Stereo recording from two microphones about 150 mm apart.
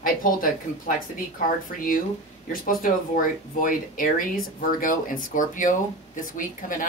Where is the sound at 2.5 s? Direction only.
65° left (ahead or behind).